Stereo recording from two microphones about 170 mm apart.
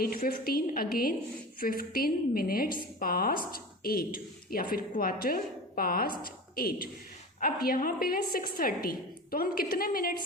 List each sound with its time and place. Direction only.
0.0 s a woman's voice: 60° left (ahead or behind)